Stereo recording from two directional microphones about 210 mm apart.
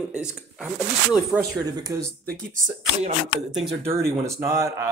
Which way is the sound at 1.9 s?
15° right (ahead or behind).